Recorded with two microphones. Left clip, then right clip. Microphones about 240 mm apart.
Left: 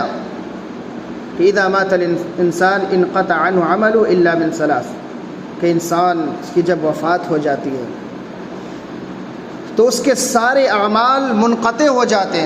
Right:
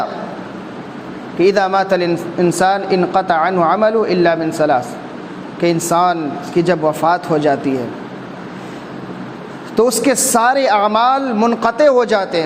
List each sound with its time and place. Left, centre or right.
1.4 s a woman's voice: right
10.0 s a woman's voice: right